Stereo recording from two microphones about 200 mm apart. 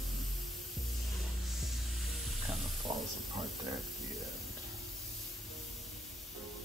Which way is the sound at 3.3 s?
Centre (ahead or behind).